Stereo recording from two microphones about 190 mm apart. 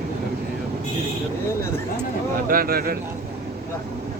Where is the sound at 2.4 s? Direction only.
50° right (ahead or behind).